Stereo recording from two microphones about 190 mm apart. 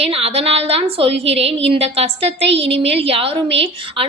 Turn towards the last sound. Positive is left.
turn(degrees=-30)  # may be behind; listen again after turning